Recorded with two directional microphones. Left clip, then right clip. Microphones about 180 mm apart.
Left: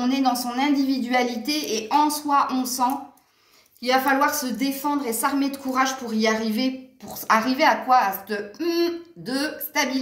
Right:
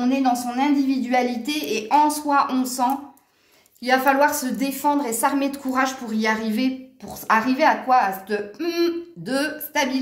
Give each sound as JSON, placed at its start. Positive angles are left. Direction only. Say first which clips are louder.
{"t": 0.0, "sound": "a woman's voice", "louder": "right 1 dB", "side_deg": -30}